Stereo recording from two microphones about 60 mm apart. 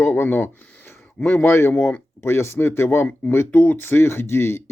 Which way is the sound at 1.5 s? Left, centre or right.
Left.